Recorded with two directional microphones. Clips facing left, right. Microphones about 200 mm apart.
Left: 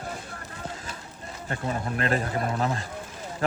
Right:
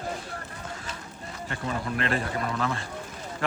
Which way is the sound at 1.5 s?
40° left (ahead or behind).